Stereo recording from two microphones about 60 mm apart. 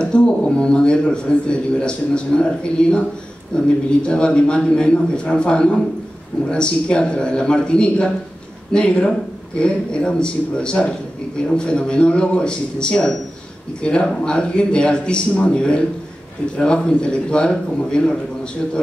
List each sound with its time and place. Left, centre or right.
0.0 s a man's voice: centre